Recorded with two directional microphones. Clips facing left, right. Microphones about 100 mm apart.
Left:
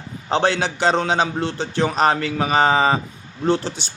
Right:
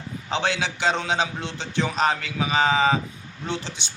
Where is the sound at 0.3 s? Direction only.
40° left (ahead or behind).